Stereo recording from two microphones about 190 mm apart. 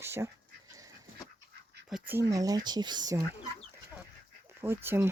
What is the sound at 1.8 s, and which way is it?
Speech, 5° right (ahead or behind).